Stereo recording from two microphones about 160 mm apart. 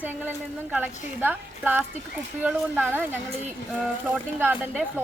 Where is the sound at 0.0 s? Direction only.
10° right (ahead or behind).